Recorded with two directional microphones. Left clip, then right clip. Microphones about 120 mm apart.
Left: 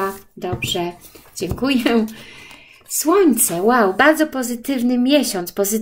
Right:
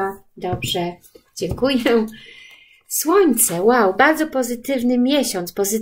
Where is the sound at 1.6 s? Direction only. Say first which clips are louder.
Right 1 dB; 40° left (ahead or behind).